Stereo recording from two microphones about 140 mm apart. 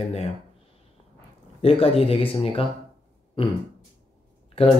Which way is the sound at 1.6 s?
45° left (ahead or behind).